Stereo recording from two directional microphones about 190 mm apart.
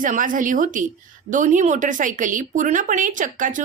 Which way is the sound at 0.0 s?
45° right (ahead or behind).